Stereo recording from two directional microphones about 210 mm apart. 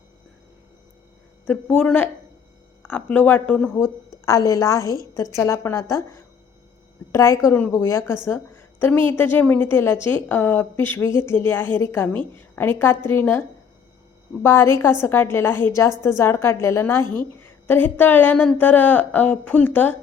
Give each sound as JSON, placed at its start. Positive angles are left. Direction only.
{"t": 1.5, "sound": "a woman's voice", "side_deg": 5}
{"t": 14.4, "sound": "speech", "side_deg": 10}